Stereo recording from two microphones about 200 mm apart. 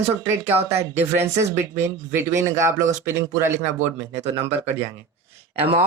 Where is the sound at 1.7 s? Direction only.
15° right (ahead or behind).